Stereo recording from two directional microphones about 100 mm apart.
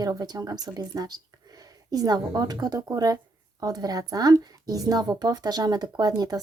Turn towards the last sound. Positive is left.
turn(degrees=-40)  # may be behind; listen again after turning